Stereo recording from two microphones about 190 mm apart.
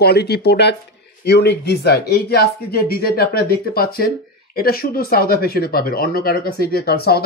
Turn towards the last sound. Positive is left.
turn(degrees=55)  # may be behind; listen again after turning